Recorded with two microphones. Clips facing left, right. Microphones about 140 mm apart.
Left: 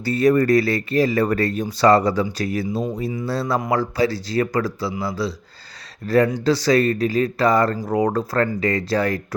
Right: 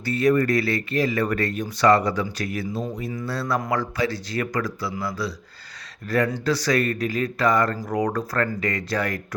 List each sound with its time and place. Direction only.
0.0 s speech: 35° left (ahead or behind)